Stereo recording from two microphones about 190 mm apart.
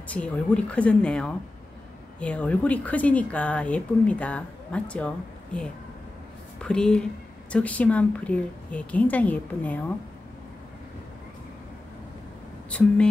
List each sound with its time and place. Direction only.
0.1 s speech: 5° left (ahead or behind)
12.6 s speech: 5° left (ahead or behind)